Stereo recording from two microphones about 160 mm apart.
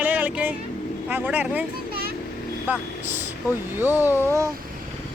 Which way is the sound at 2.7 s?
10° right (ahead or behind).